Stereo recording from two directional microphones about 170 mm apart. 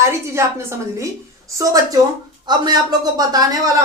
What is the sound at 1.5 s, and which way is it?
A woman's voice, 20° right (ahead or behind).